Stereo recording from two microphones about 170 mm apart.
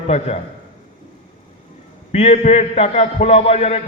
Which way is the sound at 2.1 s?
40° left (ahead or behind).